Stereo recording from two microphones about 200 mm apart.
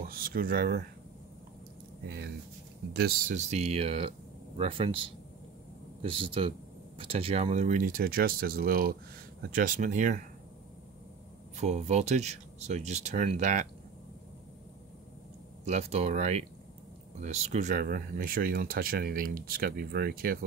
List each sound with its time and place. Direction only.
0.0 s speech: 45° right (ahead or behind)
2.0 s speech: 55° right (ahead or behind)
3.3 s speech: 35° right (ahead or behind)
6.0 s speech: 25° right (ahead or behind)
11.5 s speech: 35° right (ahead or behind)
15.6 s speech: 35° right (ahead or behind); by 20.3 s 50° right (ahead or behind)